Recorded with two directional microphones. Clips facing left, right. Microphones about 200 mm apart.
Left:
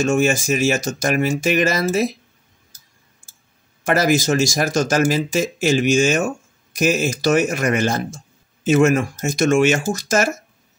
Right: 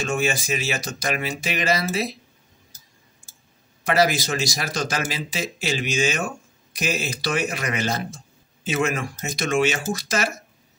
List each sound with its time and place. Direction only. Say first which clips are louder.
0.0 s speech: left 7 dB; 45° left (ahead or behind)
3.8 s speech: left 4 dB; 50° left (ahead or behind)